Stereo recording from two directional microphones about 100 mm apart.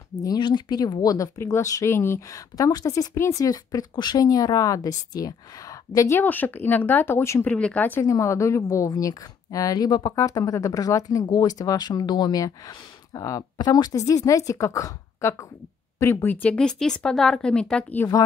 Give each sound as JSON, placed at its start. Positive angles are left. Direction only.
{"t": 0.1, "sound": "speech", "side_deg": 40}
{"t": 7.4, "sound": "speech", "side_deg": 15}
{"t": 8.0, "sound": "speech", "side_deg": 30}
{"t": 16.4, "sound": "speech", "side_deg": 10}